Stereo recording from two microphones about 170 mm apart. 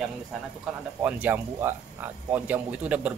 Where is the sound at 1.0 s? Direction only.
10° right (ahead or behind).